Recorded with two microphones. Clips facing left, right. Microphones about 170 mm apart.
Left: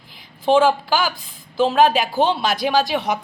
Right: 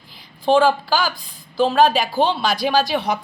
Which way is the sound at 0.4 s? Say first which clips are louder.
Even; 20° left (ahead or behind).